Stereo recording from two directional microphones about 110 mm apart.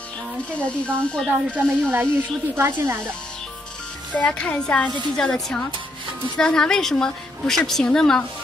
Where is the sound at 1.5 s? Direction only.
15° right (ahead or behind).